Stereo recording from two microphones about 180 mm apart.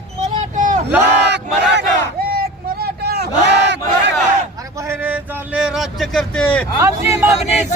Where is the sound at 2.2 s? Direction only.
60° right (ahead or behind); by 3.8 s 75° right (ahead or behind).